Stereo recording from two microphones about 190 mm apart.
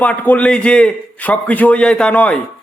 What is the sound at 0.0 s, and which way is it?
A man's voice, 10° left (ahead or behind).